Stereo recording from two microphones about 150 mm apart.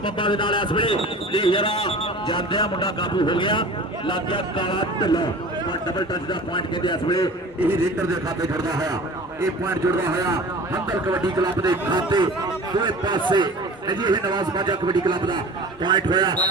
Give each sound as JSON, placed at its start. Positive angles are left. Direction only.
{"t": 0.0, "sound": "a man's voice", "side_deg": 35}
{"t": 6.5, "sound": "a man's voice", "side_deg": 30}
{"t": 8.4, "sound": "a man's voice", "side_deg": -25}